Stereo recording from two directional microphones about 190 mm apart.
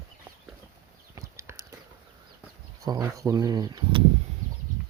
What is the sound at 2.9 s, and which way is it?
Speech, 20° right (ahead or behind).